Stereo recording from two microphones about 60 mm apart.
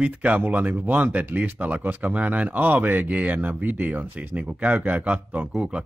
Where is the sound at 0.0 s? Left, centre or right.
Right.